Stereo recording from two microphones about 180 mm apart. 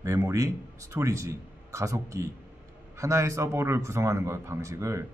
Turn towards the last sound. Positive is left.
turn(degrees=-15)  # may be behind; listen again after turning